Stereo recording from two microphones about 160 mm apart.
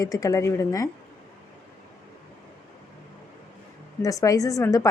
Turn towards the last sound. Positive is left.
turn(degrees=20)  # may be behind; listen again after turning